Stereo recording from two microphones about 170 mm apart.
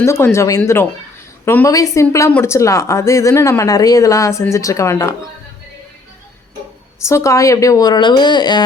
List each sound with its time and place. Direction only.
0.0 s speech: 15° left (ahead or behind)
7.1 s a woman's voice: 20° left (ahead or behind)